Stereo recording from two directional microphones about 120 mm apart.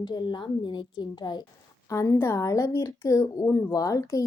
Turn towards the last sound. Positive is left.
turn(degrees=30)  # may be behind; listen again after turning